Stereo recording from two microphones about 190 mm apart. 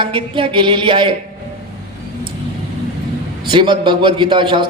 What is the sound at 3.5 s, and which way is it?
A man's voice, 25° right (ahead or behind).